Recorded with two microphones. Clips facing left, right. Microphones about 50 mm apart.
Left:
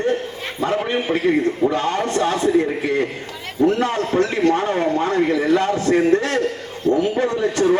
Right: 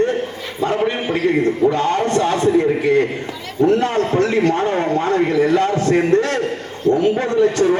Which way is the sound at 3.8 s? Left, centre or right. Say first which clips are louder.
Right 2 dB; right.